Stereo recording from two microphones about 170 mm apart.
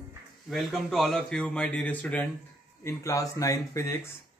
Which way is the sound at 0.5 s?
Centre (ahead or behind).